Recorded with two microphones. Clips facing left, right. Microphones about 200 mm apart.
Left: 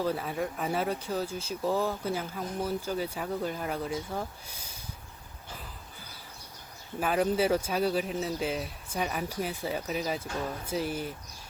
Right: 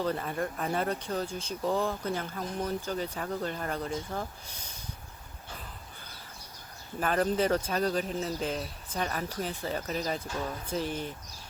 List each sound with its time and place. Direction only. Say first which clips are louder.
0.0 s speech: left 1 dB; 5° left (ahead or behind)
7.0 s speech: left 1 dB; 5° left (ahead or behind)